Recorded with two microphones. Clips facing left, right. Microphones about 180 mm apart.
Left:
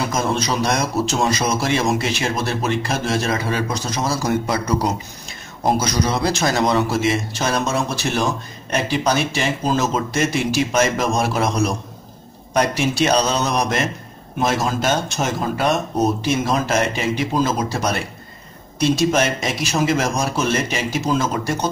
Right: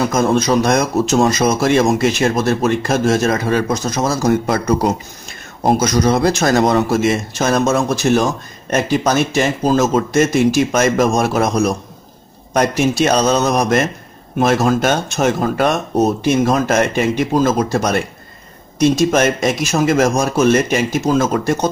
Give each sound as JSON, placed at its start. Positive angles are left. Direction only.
{"t": 0.0, "sound": "a man's voice", "side_deg": -50}